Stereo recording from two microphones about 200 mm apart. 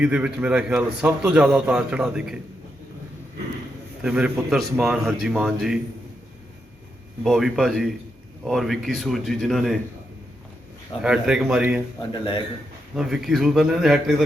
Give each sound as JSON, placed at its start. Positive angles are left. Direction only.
{"t": 0.0, "sound": "a man's voice", "side_deg": -5}
{"t": 4.0, "sound": "a man's voice", "side_deg": -5}
{"t": 7.3, "sound": "a man's voice", "side_deg": 0}
{"t": 11.0, "sound": "a man's voice", "side_deg": -5}
{"t": 11.9, "sound": "a man's voice", "side_deg": 20}
{"t": 13.0, "sound": "a man's voice", "side_deg": 0}